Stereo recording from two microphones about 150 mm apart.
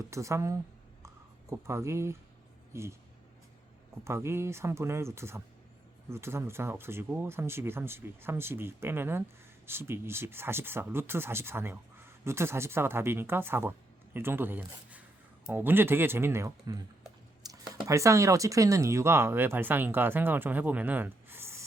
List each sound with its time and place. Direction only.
0.1 s a woman's voice: 20° right (ahead or behind)
1.0 s a sound: 20° right (ahead or behind)
2.7 s a woman's voice: 20° right (ahead or behind)
4.0 s speech: 20° right (ahead or behind)
17.5 s a sound: 25° right (ahead or behind)
17.8 s speech: 20° right (ahead or behind)